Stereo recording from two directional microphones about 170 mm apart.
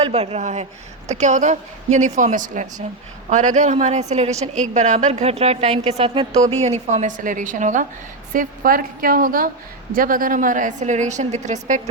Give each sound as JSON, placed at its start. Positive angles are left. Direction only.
{"t": 0.0, "sound": "a woman's voice", "side_deg": -35}